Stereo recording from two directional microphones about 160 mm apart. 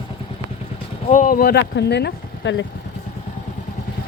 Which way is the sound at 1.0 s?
55° left (ahead or behind).